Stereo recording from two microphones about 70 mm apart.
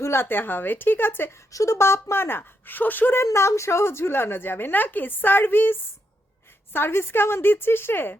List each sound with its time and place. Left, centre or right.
0.0 s a woman's voice: left
1.5 s a woman's voice: left
3.2 s a woman's voice: left